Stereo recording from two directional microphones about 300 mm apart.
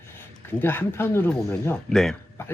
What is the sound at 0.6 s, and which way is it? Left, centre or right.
Speech, centre.